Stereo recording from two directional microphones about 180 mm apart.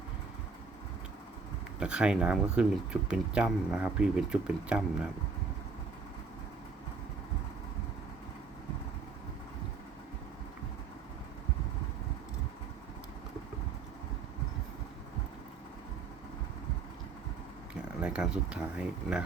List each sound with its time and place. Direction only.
1.8 s speech: 5° right (ahead or behind)
17.8 s speech: 5° right (ahead or behind)